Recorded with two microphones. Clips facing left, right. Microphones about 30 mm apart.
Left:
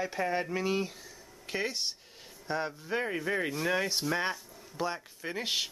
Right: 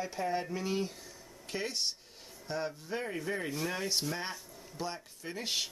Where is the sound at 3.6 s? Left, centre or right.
Centre.